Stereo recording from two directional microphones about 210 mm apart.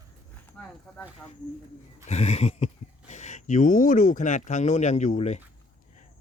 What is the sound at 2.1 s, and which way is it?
Speech, 30° left (ahead or behind).